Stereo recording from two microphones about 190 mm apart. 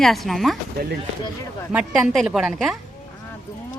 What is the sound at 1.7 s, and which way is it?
Speech, 5° right (ahead or behind).